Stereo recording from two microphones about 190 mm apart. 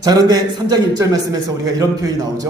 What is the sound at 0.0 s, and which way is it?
A man's voice, 20° right (ahead or behind).